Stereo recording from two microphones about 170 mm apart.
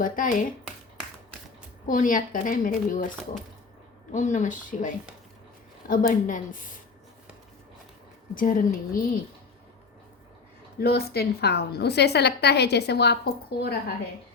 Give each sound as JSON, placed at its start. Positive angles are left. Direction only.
{"t": 0.0, "sound": "a woman's voice", "side_deg": 50}
{"t": 1.9, "sound": "a woman's voice", "side_deg": 50}
{"t": 4.1, "sound": "a woman's voice", "side_deg": 50}
{"t": 8.4, "sound": "a woman's voice", "side_deg": 55}
{"t": 10.8, "sound": "a woman's voice", "side_deg": 70}